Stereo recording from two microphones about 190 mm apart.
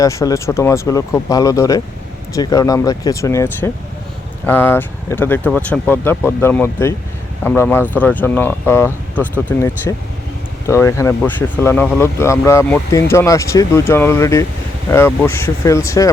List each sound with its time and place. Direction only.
0.0 s speech: 15° left (ahead or behind)